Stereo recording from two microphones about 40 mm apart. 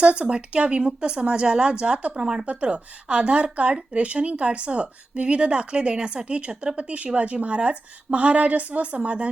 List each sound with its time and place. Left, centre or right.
0.0 s a woman's voice: right